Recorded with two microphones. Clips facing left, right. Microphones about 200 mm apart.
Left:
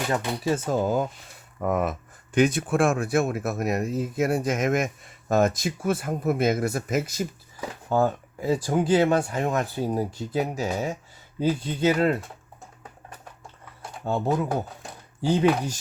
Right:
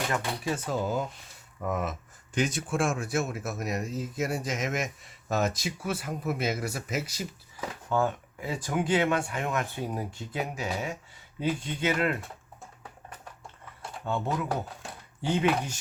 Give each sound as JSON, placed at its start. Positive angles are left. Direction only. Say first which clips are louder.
{"t": 0.5, "sound": "speech", "louder": "left 6 dB", "side_deg": 45}
{"t": 7.9, "sound": "speech", "louder": "left 5 dB", "side_deg": 35}
{"t": 14.0, "sound": "speech", "louder": "left 6 dB", "side_deg": 40}